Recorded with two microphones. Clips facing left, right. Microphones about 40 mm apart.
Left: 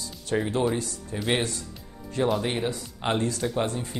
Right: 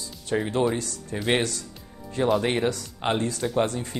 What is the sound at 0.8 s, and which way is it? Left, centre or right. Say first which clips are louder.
Speech: even; right.